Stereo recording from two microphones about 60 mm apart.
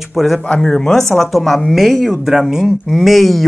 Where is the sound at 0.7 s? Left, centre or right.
Centre.